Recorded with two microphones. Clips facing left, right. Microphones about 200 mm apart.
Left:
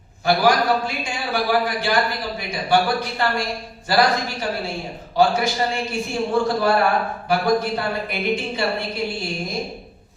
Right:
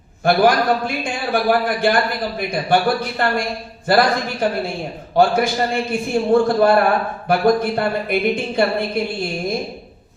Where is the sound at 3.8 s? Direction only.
55° right (ahead or behind).